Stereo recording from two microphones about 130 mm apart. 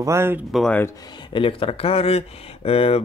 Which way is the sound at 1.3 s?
45° left (ahead or behind).